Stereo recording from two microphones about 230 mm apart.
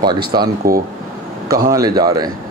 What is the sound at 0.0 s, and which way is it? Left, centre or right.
Speech, centre.